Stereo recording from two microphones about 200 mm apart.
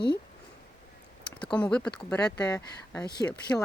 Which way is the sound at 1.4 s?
5° left (ahead or behind).